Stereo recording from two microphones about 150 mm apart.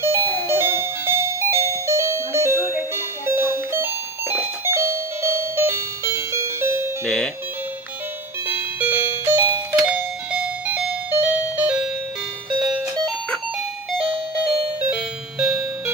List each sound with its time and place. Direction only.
0.0 s music: 15° right (ahead or behind)
3.3 s doorbell: 15° right (ahead or behind)
8.5 s music: 10° right (ahead or behind)
9.8 s music: 5° right (ahead or behind)
14.8 s music: 10° right (ahead or behind)